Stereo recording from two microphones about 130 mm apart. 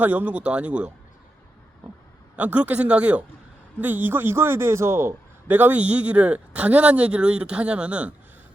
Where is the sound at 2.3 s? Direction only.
10° right (ahead or behind).